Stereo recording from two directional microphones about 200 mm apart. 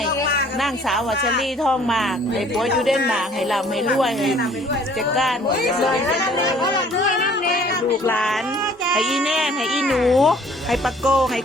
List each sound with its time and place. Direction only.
0.6 s speech: centre (ahead or behind)
7.4 s a sound: 50° left (ahead or behind)
8.0 s speech: 5° left (ahead or behind)